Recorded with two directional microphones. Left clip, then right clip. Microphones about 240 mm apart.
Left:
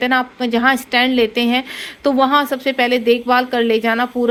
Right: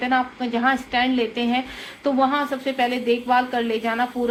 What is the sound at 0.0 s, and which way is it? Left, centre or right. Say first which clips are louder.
A woman's voice: left 5 dB; left.